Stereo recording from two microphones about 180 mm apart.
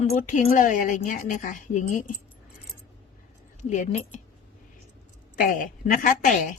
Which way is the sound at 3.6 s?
40° left (ahead or behind).